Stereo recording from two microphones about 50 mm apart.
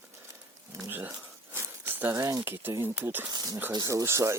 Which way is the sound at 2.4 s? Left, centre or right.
Right.